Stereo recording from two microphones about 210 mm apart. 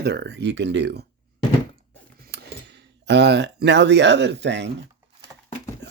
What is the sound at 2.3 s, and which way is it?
Speech, 55° right (ahead or behind).